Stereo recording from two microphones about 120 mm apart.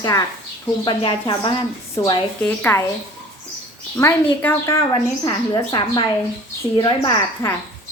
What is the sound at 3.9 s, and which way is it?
Speech, 20° left (ahead or behind).